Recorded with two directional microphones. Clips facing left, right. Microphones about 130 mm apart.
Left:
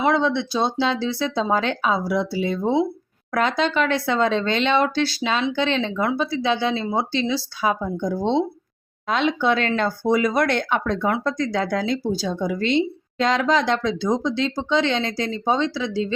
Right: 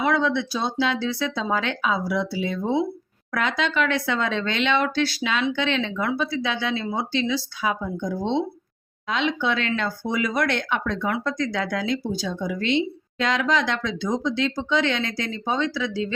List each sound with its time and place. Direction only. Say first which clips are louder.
0.0 s speech: left 2 dB; 30° left (ahead or behind)
9.0 s speech: left 4 dB; 45° left (ahead or behind); by 16.1 s 30° left (ahead or behind)